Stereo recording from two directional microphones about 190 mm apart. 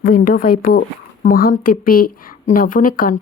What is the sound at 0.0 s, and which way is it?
A woman's voice, 45° left (ahead or behind).